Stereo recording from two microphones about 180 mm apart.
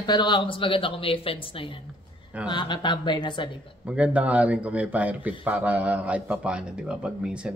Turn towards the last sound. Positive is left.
turn(degrees=-5)  # may be behind; listen again after turning